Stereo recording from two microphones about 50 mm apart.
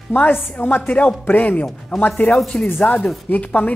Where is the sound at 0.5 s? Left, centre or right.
Left.